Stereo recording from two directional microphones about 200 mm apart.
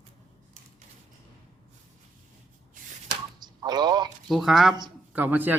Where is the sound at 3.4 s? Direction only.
20° right (ahead or behind).